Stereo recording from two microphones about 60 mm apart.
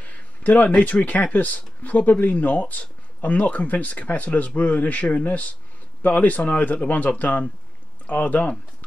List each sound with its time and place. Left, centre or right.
0.0 s speech: left